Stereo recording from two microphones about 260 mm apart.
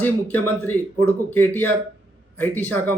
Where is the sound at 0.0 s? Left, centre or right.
Centre.